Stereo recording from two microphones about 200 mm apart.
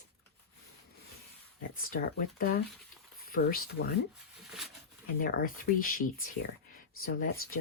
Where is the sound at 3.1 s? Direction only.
50° left (ahead or behind).